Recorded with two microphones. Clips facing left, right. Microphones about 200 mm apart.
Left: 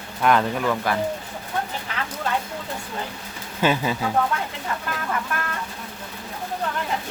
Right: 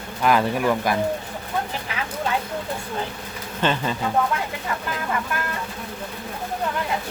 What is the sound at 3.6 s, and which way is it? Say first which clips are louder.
Speech: left 2 dB; 10° left (ahead or behind).